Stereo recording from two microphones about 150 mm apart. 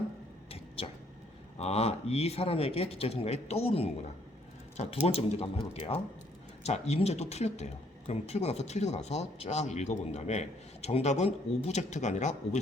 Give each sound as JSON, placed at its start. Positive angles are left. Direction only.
{"t": 1.5, "sound": "speech", "side_deg": 45}